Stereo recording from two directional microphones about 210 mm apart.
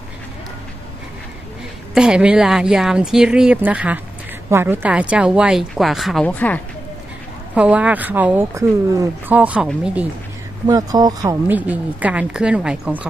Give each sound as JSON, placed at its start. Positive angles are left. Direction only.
{"t": 2.0, "sound": "speech", "side_deg": -5}
{"t": 7.5, "sound": "speech", "side_deg": -5}
{"t": 10.7, "sound": "speech", "side_deg": -15}